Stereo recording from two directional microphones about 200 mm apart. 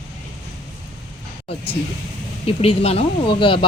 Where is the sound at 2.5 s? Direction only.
30° left (ahead or behind).